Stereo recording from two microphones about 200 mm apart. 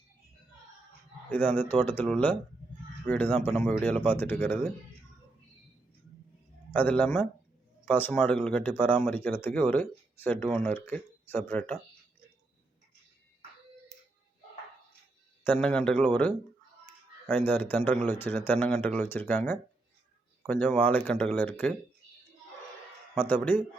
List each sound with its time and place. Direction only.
1.3 s speech: 10° left (ahead or behind)
6.7 s speech: 10° left (ahead or behind)
15.4 s a man's voice: 5° left (ahead or behind)
23.1 s speech: 10° left (ahead or behind)